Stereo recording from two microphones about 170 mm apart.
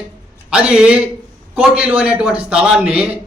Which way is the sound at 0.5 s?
5° right (ahead or behind).